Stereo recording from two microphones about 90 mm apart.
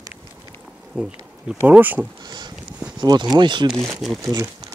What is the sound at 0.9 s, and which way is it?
Bee, 5° right (ahead or behind).